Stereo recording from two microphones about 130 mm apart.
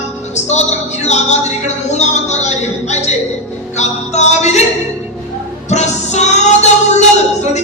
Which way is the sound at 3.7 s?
60° left (ahead or behind).